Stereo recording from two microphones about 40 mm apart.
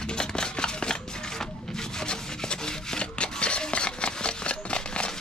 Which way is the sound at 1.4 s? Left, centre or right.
Centre.